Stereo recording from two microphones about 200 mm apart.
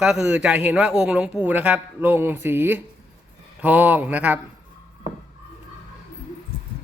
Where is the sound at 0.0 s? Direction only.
5° right (ahead or behind).